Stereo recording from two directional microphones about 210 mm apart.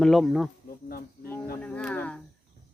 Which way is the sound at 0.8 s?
45° left (ahead or behind).